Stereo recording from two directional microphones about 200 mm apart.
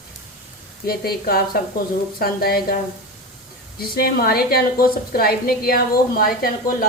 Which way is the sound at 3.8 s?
50° left (ahead or behind).